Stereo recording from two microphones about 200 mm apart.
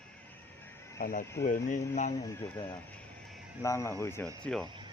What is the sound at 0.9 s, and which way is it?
Speech, 45° left (ahead or behind).